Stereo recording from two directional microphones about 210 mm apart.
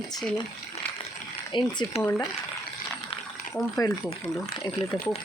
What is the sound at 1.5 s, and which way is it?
Speech, 20° left (ahead or behind).